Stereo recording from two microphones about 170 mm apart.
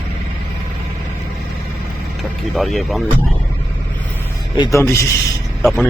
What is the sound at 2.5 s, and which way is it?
Speech, centre (ahead or behind).